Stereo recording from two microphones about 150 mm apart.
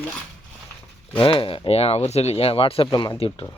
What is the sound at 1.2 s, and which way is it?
Speech, 35° left (ahead or behind).